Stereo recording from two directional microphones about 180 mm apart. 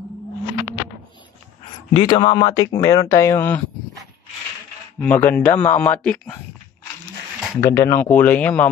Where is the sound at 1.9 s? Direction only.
25° left (ahead or behind); by 3.6 s 10° left (ahead or behind).